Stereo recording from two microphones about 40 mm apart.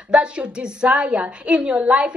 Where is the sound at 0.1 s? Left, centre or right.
Right.